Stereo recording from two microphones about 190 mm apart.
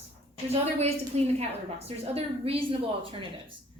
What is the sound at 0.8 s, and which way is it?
A woman's voice, 35° right (ahead or behind).